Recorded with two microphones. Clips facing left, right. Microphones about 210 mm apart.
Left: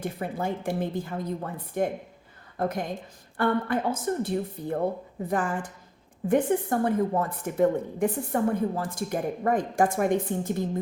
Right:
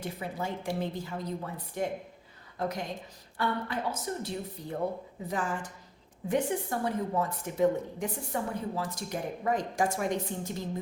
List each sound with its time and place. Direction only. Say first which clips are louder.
0.0 s speech: left 5 dB; 50° left (ahead or behind)
6.2 s speech: left 6 dB; 55° left (ahead or behind)